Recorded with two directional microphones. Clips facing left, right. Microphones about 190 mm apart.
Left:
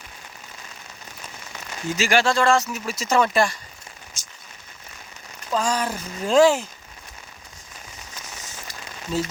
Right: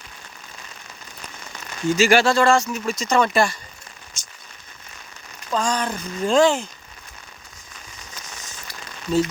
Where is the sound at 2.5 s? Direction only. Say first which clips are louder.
Right 2 dB; 5° left (ahead or behind).